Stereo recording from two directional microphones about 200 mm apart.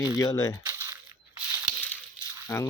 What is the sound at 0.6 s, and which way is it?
Crushing, 15° right (ahead or behind).